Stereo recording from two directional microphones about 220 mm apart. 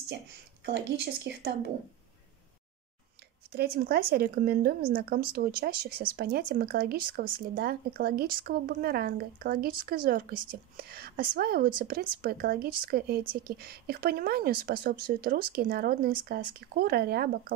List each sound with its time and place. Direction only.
0.7 s speech: 50° right (ahead or behind)
3.5 s a woman's voice: 45° right (ahead or behind)